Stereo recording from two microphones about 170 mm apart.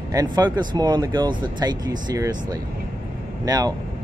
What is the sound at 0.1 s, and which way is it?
Speech, 25° right (ahead or behind).